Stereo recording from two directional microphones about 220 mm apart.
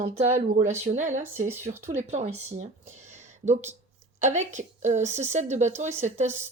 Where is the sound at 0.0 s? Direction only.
30° right (ahead or behind).